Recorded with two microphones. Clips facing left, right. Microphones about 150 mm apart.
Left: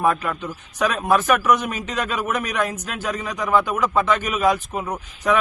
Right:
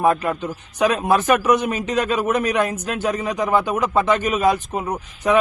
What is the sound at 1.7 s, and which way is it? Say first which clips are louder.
A man's voice: right 5 dB; 40° right (ahead or behind).